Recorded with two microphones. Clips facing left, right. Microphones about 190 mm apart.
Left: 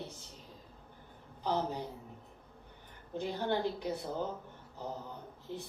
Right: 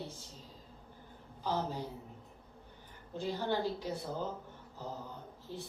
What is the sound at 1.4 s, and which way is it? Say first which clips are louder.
Speech: left 2 dB; 20° left (ahead or behind).